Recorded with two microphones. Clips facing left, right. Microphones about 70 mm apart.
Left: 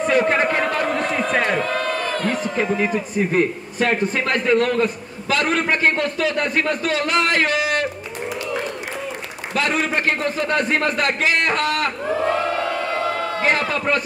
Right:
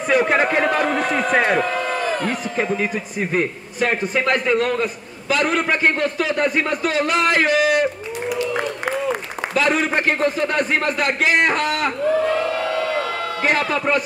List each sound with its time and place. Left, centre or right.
0.1 s a man's voice: centre
3.3 s a man's voice: centre
9.6 s a man's voice: centre
13.4 s a man's voice: centre